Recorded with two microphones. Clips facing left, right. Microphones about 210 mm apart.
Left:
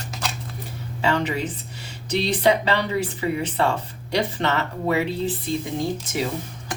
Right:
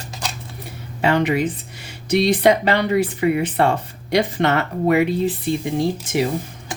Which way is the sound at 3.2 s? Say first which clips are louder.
Right 5 dB; 55° right (ahead or behind).